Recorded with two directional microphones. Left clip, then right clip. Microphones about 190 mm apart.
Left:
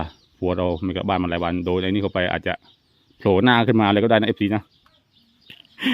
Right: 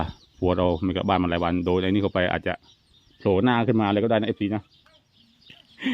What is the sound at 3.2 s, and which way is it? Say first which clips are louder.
A man's voice: left 5 dB; 25° left (ahead or behind).